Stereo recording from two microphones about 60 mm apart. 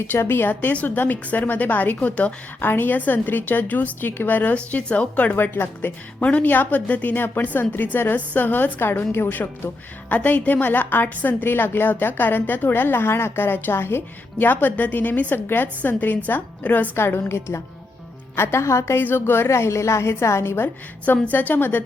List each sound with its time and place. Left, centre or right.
0.1 s a woman's voice: left
16.9 s a woman's voice: left
18.9 s a woman's voice: left
21.0 s a woman's voice: left